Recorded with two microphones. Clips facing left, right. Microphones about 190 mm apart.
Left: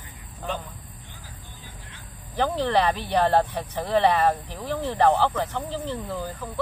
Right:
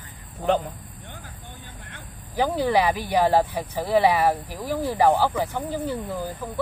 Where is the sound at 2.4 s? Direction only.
10° right (ahead or behind).